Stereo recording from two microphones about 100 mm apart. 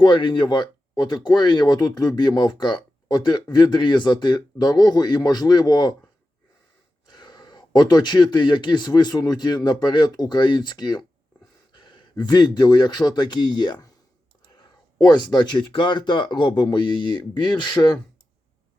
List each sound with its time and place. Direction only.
0.0 s speech: 55° left (ahead or behind)
7.1 s speech: 45° left (ahead or behind)
15.0 s speech: 45° left (ahead or behind)